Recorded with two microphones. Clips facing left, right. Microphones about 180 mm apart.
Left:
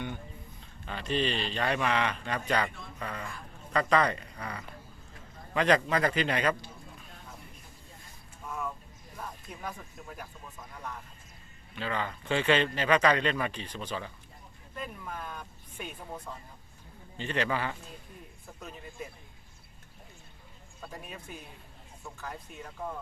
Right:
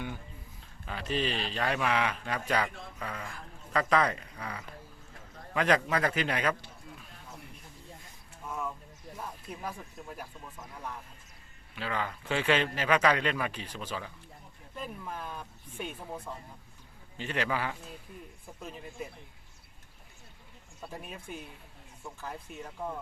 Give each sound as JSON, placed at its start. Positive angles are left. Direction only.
{"t": 0.9, "sound": "speech", "side_deg": -5}
{"t": 8.4, "sound": "a sound", "side_deg": -5}
{"t": 9.1, "sound": "speech", "side_deg": -5}
{"t": 20.8, "sound": "speech", "side_deg": 0}